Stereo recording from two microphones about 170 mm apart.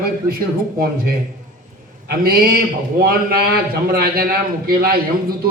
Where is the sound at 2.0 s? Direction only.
60° right (ahead or behind).